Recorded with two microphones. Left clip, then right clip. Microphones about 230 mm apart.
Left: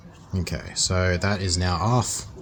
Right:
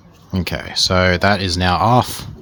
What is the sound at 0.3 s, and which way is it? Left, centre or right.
A man's voice, right.